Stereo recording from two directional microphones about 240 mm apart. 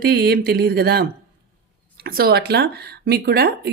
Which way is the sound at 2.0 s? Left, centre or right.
Right.